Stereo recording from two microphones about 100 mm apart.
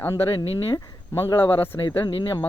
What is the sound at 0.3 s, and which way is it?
Speech, 55° left (ahead or behind).